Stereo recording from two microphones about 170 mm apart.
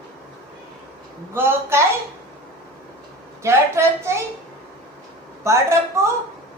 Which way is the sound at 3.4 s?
15° right (ahead or behind).